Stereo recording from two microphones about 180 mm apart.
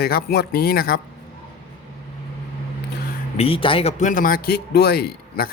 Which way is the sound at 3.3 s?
30° left (ahead or behind).